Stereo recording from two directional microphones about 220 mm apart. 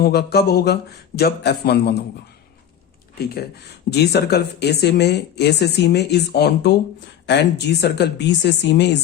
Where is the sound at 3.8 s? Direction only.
50° left (ahead or behind).